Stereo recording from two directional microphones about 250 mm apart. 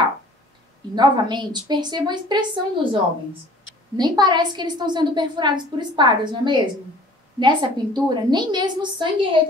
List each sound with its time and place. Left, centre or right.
0.9 s a woman's voice: centre